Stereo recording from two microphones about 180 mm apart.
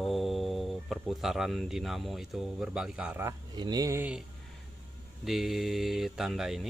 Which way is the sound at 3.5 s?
20° right (ahead or behind).